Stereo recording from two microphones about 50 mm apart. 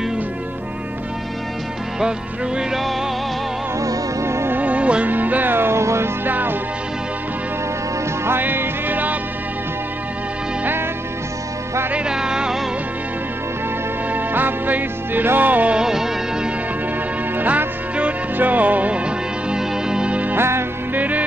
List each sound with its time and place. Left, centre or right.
2.0 s music: centre
4.2 s music: right
4.5 s music: right
5.1 s music: right
5.8 s music: right
6.2 s music: right
8.3 s music: right
11.9 s music: centre
14.1 s music: right
15.7 s music: centre
17.4 s music: right; by 20.2 s centre
20.3 s music: right
20.9 s music: right